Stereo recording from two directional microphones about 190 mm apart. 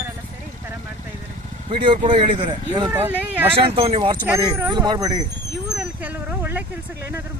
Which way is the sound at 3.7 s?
30° right (ahead or behind).